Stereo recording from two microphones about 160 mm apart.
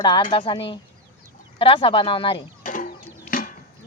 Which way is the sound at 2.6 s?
55° left (ahead or behind).